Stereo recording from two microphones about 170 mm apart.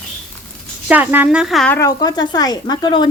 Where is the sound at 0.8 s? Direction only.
10° right (ahead or behind).